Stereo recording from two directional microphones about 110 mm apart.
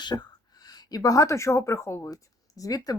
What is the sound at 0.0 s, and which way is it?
A woman's voice, 40° left (ahead or behind).